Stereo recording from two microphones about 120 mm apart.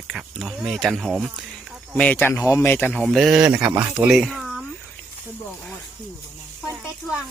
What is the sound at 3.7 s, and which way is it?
Speech, 15° right (ahead or behind).